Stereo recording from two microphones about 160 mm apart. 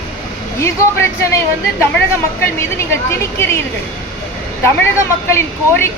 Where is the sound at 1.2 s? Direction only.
15° left (ahead or behind).